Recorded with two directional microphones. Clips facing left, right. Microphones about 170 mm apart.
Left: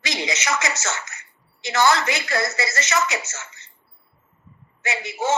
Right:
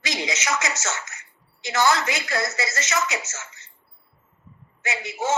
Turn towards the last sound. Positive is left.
turn(degrees=65)  # may be behind; listen again after turning